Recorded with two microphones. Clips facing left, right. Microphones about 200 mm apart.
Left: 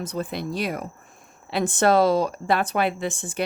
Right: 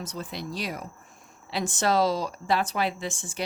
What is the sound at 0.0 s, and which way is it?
Speech, 55° left (ahead or behind).